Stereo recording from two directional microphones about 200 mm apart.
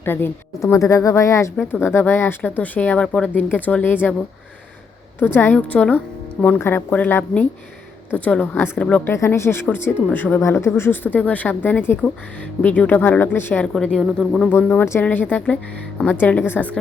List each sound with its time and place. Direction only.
0.0 s a woman's voice: 10° left (ahead or behind)
5.2 s a woman's voice: 10° left (ahead or behind)